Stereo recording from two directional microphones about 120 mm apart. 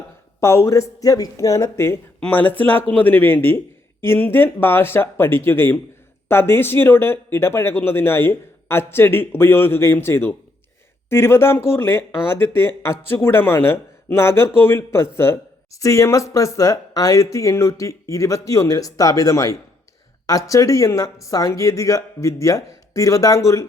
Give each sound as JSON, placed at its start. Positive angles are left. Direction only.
{"t": 0.3, "sound": "a man's voice", "side_deg": 20}